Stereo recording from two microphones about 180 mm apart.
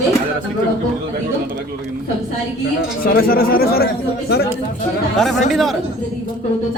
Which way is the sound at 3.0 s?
55° left (ahead or behind).